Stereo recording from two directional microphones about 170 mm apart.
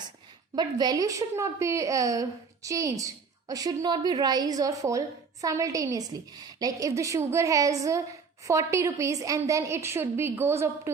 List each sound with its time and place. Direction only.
0.5 s a woman's voice: 25° right (ahead or behind)